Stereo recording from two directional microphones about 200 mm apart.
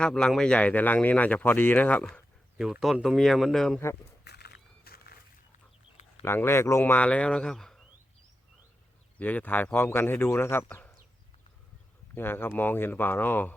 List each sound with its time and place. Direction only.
0.0 s speech: 5° left (ahead or behind)
4.2 s a sound: 55° left (ahead or behind)
6.2 s speech: 10° left (ahead or behind)
9.1 s speech: 10° left (ahead or behind)
12.1 s speech: 10° left (ahead or behind)